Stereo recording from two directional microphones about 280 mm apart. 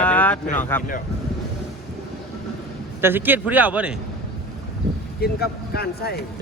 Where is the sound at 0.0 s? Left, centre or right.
Centre.